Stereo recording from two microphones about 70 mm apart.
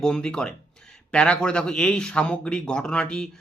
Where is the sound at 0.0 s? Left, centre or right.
Centre.